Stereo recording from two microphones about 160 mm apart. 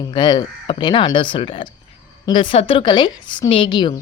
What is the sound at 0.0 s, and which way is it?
Speech, 30° left (ahead or behind).